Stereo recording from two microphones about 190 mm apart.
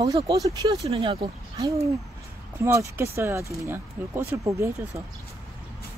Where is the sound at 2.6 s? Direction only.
15° right (ahead or behind).